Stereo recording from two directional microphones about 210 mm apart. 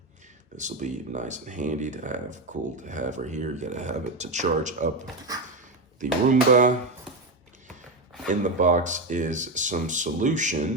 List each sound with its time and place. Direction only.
0.5 s speech: 35° right (ahead or behind)
6.0 s speech: 40° right (ahead or behind)
8.3 s speech: 35° right (ahead or behind)